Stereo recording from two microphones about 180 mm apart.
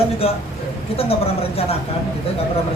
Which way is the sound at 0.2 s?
35° left (ahead or behind).